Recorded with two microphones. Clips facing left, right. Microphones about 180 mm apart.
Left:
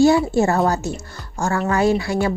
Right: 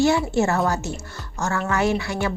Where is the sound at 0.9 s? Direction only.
30° left (ahead or behind).